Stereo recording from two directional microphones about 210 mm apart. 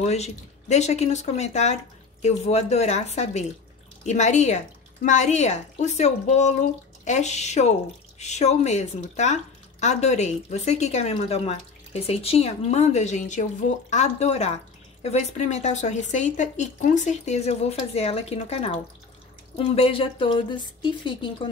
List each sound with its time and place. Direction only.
0.0 s a woman's voice: 30° left (ahead or behind)